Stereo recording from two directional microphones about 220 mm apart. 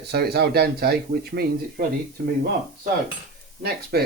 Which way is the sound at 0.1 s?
45° right (ahead or behind).